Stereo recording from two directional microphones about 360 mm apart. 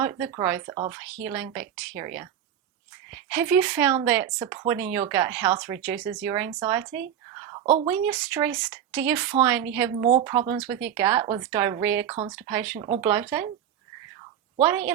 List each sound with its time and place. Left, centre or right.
0.0 s speech: centre
7.4 s a sound: centre
7.9 s speech: centre
10.1 s speech: centre
10.7 s speech: centre
14.6 s speech: centre